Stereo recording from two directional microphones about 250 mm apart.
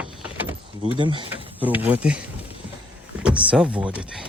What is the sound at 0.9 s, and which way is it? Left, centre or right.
Speech, centre.